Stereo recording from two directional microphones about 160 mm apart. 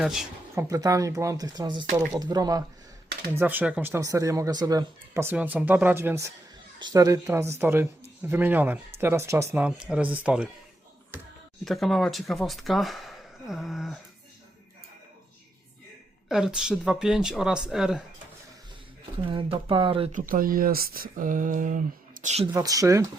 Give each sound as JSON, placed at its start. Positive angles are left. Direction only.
{"t": 0.0, "sound": "speech", "side_deg": 0}
{"t": 0.5, "sound": "speech", "side_deg": -20}
{"t": 3.3, "sound": "speech", "side_deg": -10}
{"t": 11.6, "sound": "speech", "side_deg": 0}
{"t": 16.3, "sound": "speech", "side_deg": -5}
{"t": 19.2, "sound": "speech", "side_deg": -30}
{"t": 20.1, "sound": "speech", "side_deg": -60}
{"t": 22.5, "sound": "speech", "side_deg": -20}